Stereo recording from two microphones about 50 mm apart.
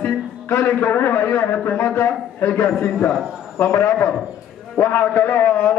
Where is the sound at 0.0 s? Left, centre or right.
Left.